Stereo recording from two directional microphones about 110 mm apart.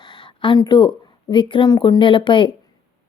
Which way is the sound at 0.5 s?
40° left (ahead or behind).